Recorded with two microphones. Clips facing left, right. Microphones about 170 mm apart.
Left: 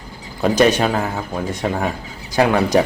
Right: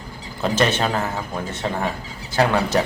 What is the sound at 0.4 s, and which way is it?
Speech, 10° left (ahead or behind).